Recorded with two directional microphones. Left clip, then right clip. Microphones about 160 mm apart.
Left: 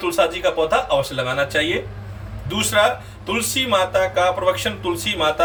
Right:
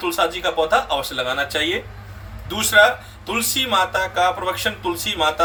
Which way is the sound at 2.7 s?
15° left (ahead or behind).